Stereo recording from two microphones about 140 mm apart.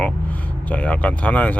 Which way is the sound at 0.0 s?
10° left (ahead or behind).